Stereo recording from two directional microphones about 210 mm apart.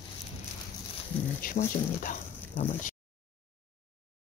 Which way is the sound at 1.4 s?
40° left (ahead or behind).